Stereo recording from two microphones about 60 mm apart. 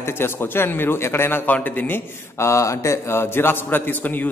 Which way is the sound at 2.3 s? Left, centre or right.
Left.